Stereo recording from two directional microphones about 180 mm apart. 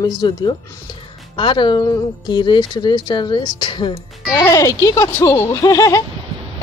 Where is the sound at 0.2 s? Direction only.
25° left (ahead or behind).